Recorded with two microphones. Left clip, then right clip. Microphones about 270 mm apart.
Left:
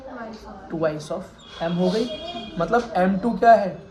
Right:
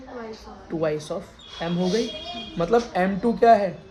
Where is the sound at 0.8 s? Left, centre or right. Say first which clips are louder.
Left 1 dB; right.